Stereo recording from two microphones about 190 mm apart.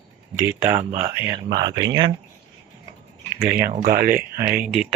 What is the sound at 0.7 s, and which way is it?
Speech, 35° right (ahead or behind).